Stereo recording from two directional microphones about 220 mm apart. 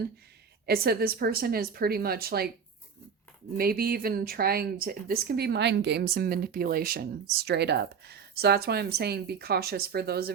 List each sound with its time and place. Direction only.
0.6 s speech: 45° right (ahead or behind)
3.6 s speech: 45° right (ahead or behind)